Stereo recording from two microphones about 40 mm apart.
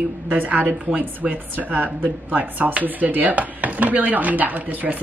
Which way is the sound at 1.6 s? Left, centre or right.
Right.